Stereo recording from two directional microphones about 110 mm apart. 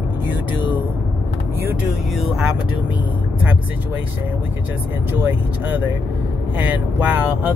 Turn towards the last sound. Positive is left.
turn(degrees=-15)  # may be behind; listen again after turning